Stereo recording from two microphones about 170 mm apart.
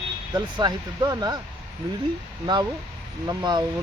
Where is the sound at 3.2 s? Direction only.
25° right (ahead or behind).